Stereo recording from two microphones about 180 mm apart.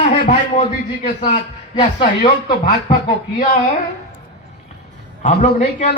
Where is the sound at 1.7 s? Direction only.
30° left (ahead or behind).